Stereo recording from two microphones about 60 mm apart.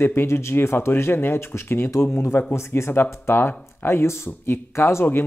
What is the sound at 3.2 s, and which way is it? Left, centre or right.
Speech, left.